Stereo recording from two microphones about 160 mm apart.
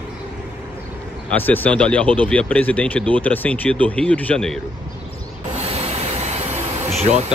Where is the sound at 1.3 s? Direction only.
10° left (ahead or behind).